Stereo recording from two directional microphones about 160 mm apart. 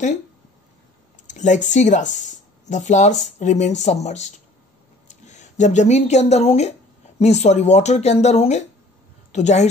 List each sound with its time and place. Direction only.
1.2 s speech: 50° left (ahead or behind)